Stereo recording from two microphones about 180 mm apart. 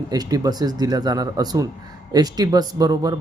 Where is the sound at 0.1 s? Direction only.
20° right (ahead or behind).